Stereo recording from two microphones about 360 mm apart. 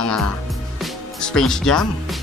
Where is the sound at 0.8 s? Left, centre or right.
Centre.